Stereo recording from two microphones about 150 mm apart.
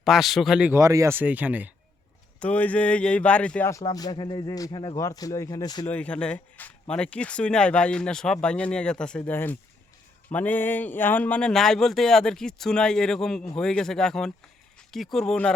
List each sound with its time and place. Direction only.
0.0 s speech: centre (ahead or behind)
0.7 s speech: 20° right (ahead or behind)
2.4 s speech: 10° left (ahead or behind)
3.7 s speech: 25° left (ahead or behind)
5.9 s speech: 10° left (ahead or behind)